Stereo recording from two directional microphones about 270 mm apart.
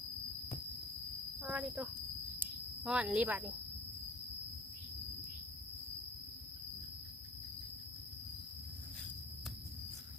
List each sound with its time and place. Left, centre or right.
1.4 s speech: centre